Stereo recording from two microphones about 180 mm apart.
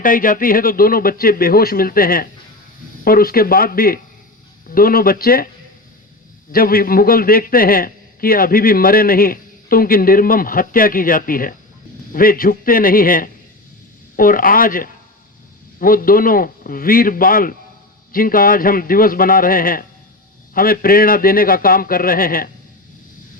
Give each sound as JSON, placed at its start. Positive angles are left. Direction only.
{"t": 0.0, "sound": "a man's voice", "side_deg": 50}
{"t": 6.5, "sound": "a man's voice", "side_deg": 55}